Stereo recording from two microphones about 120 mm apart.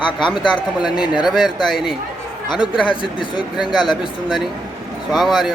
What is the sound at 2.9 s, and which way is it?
Speech, 45° left (ahead or behind).